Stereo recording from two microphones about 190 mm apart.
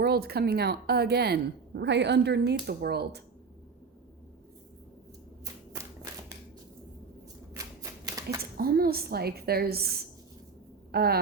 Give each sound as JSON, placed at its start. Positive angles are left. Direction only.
{"t": 0.0, "sound": "a woman's voice", "side_deg": -55}
{"t": 7.6, "sound": "a sound", "side_deg": -15}
{"t": 8.4, "sound": "a woman's voice", "side_deg": -50}